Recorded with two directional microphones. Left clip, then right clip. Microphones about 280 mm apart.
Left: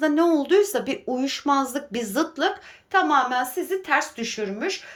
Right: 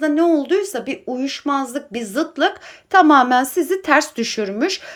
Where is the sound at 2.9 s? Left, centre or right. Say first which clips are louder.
Right 8 dB; centre.